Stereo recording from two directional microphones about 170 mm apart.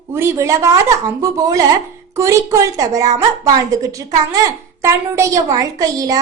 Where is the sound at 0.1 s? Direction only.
15° right (ahead or behind).